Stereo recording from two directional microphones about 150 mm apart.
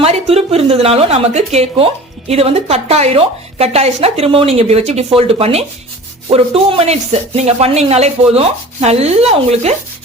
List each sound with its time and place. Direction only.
0.0 s speech: 45° right (ahead or behind)